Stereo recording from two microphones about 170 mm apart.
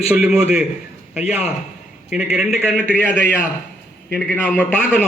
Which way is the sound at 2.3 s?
5° right (ahead or behind).